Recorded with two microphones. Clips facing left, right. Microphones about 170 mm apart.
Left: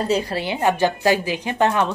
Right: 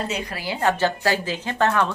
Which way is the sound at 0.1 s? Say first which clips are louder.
Left 7 dB; 30° left (ahead or behind).